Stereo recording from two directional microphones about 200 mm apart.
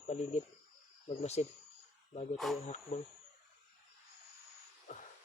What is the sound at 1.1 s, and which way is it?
Speech, 30° left (ahead or behind).